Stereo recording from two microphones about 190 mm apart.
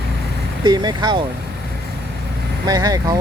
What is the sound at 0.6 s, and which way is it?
Speech, 20° right (ahead or behind).